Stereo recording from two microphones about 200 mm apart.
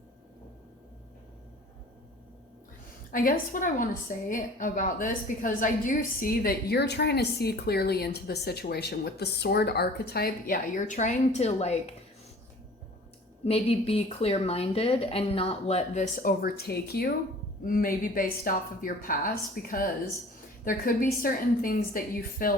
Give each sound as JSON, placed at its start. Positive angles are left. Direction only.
{"t": 3.1, "sound": "a woman's voice", "side_deg": 45}
{"t": 13.4, "sound": "a woman's voice", "side_deg": 30}
{"t": 16.2, "sound": "a woman's voice", "side_deg": 50}